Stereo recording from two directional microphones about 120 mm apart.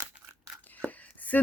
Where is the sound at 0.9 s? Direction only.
15° left (ahead or behind).